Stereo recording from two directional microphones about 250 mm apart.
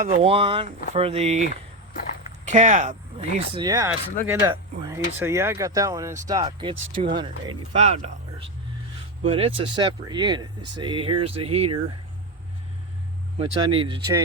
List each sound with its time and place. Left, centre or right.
0.0 s speech: right
3.3 s speech: centre
13.4 s speech: right